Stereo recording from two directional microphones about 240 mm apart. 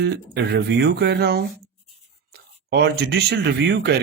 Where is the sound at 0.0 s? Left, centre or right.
Right.